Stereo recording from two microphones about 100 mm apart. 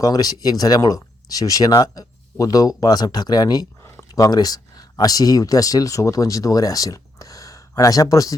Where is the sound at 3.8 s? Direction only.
25° left (ahead or behind).